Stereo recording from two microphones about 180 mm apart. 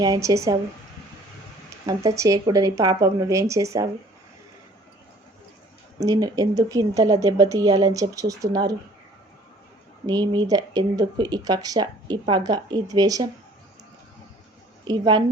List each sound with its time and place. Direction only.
0.0 s speech: 20° right (ahead or behind)
1.9 s speech: 20° right (ahead or behind)
6.0 s speech: 20° right (ahead or behind)
10.1 s speech: 25° right (ahead or behind)
14.8 s speech: 25° right (ahead or behind)